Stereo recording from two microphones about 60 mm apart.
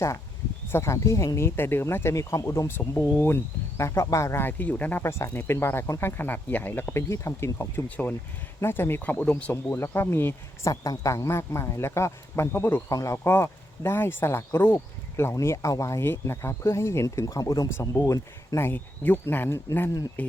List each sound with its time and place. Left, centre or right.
0.7 s speech: left
2.1 s speech: left
2.6 s speech: left
3.8 s speech: left
4.4 s speech: left
5.0 s speech: left
7.9 s speech: left
8.6 s speech: left
10.6 s speech: left
12.9 s speech: left
13.2 s speech: left
15.5 s speech: left
17.7 s speech: left
18.7 s speech: left